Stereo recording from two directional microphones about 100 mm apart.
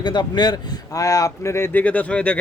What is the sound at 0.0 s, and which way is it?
Speech, 45° left (ahead or behind).